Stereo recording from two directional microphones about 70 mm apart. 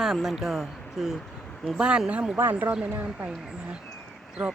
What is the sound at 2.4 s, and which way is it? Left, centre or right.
Speech, right.